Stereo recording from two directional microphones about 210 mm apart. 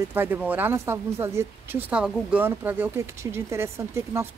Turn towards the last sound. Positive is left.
turn(degrees=-10)  # may be behind; listen again after turning